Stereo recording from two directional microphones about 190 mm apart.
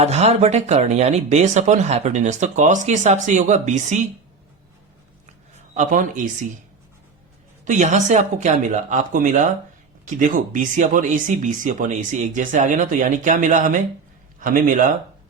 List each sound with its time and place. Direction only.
0.0 s speech: 35° right (ahead or behind)
5.2 s a sound: 40° right (ahead or behind)
7.6 s a man's voice: 40° right (ahead or behind)